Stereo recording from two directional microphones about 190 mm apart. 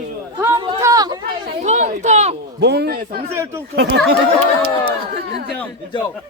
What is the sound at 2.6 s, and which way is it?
Speech, 60° right (ahead or behind).